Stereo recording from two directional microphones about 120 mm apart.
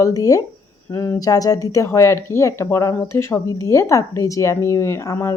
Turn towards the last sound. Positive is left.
turn(degrees=25)  # may be behind; listen again after turning